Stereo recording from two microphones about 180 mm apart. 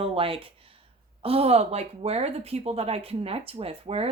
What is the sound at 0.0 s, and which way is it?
A woman's voice, 30° right (ahead or behind).